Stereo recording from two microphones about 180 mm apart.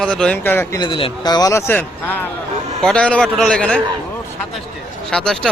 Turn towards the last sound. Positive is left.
turn(degrees=5)  # may be behind; listen again after turning